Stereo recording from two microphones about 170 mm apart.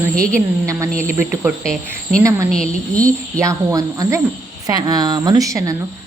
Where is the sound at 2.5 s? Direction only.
5° left (ahead or behind).